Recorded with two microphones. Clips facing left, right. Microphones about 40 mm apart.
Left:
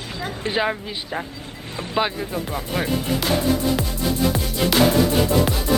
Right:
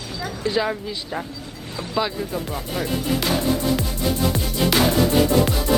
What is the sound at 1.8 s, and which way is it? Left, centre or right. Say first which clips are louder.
Speech: left 1 dB; left.